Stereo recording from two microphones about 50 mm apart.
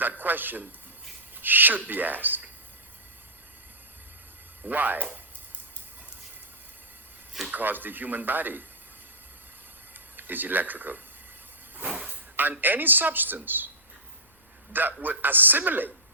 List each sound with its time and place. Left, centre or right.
0.0 s a man's voice: right
4.6 s speech: right
7.5 s speech: right
9.9 s speech: right
11.9 s speech: right
12.1 s speech: right
14.7 s a man's voice: right